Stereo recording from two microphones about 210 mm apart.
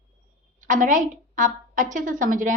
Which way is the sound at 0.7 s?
40° right (ahead or behind).